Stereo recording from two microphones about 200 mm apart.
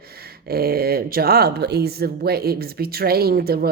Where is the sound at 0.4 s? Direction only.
50° right (ahead or behind).